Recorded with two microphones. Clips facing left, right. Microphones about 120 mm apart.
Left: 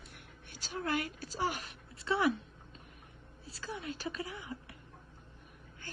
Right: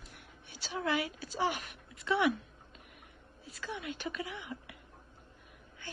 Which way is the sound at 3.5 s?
35° left (ahead or behind).